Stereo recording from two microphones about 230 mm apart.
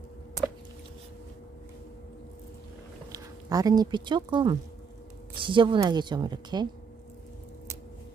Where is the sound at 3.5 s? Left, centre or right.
Centre.